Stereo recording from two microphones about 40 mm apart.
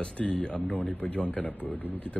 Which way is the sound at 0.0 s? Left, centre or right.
Left.